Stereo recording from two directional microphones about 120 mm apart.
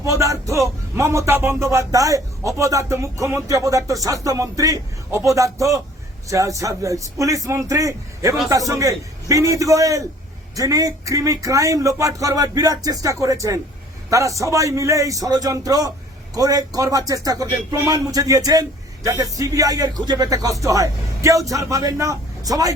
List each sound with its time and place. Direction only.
0.0 s speech: 25° right (ahead or behind)